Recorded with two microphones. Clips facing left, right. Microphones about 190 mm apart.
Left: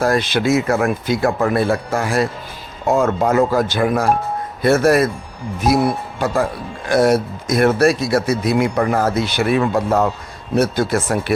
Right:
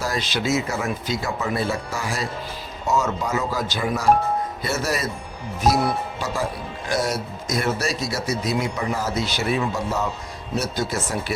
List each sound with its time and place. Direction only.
0.0 s speech: 55° left (ahead or behind)
6.1 s speech: 55° left (ahead or behind)